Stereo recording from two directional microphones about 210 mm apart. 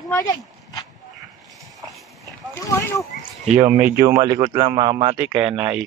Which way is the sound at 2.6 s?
15° left (ahead or behind).